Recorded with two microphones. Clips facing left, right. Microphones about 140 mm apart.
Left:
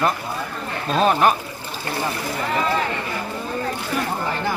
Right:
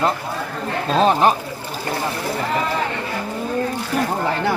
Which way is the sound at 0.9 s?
30° right (ahead or behind).